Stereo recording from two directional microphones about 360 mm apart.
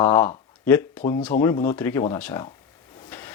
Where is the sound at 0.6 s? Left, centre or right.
Centre.